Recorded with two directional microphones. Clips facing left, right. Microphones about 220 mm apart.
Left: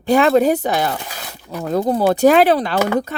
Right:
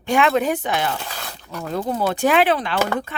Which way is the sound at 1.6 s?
40° left (ahead or behind).